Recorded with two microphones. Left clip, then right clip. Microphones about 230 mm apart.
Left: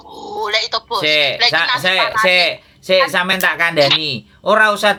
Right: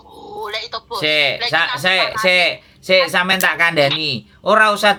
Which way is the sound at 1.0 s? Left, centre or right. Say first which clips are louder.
Left 2 dB; centre.